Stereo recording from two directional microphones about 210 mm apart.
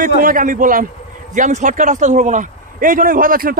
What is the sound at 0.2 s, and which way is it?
A man's voice, 40° right (ahead or behind).